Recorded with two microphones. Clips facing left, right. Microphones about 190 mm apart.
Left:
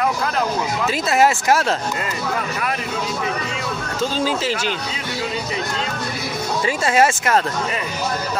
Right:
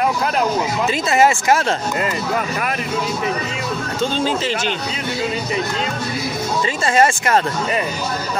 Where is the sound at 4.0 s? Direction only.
5° left (ahead or behind).